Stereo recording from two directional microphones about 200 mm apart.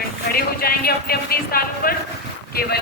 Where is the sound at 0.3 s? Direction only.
50° left (ahead or behind).